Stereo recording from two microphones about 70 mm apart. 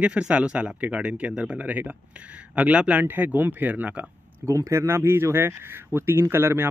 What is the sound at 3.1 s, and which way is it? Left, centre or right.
Speech, right.